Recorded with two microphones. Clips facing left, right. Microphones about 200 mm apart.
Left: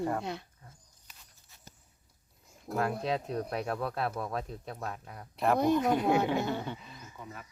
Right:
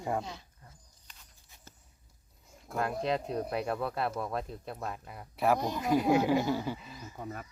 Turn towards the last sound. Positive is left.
turn(degrees=-50)  # may be behind; listen again after turning